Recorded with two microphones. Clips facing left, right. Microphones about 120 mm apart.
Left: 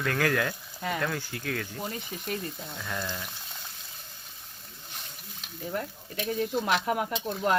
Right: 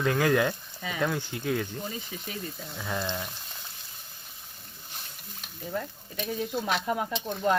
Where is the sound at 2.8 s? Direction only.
15° right (ahead or behind).